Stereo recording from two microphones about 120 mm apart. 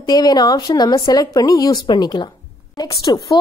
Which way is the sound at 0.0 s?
30° left (ahead or behind).